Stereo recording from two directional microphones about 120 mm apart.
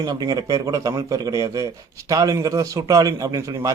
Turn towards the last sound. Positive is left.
turn(degrees=-30)  # may be behind; listen again after turning